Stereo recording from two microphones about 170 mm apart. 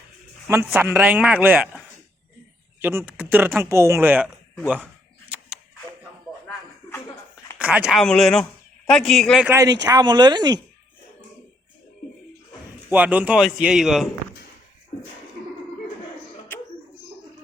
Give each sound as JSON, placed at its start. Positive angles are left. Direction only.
{"t": 0.4, "sound": "a man's voice", "side_deg": -10}
{"t": 3.1, "sound": "a man's voice", "side_deg": -10}
{"t": 7.6, "sound": "a man's voice", "side_deg": -10}
{"t": 9.5, "sound": "speech", "side_deg": -20}
{"t": 12.9, "sound": "a man's voice", "side_deg": -10}